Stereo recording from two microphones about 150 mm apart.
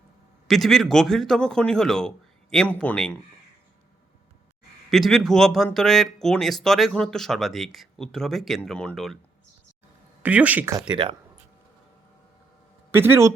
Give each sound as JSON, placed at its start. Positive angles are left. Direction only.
{"t": 0.4, "sound": "speech", "side_deg": 0}
{"t": 4.9, "sound": "speech", "side_deg": 0}
{"t": 10.2, "sound": "speech", "side_deg": -10}
{"t": 10.8, "sound": "speech", "side_deg": -30}
{"t": 12.9, "sound": "speech", "side_deg": -15}